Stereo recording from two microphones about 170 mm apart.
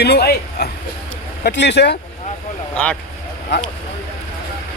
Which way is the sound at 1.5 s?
90° left.